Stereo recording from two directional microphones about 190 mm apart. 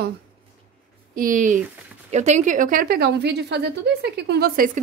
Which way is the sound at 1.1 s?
45° right (ahead or behind).